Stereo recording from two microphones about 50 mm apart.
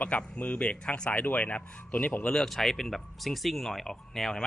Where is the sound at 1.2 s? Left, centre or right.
Left.